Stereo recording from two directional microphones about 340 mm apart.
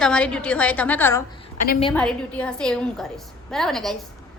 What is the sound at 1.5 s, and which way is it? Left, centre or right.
Speech, left.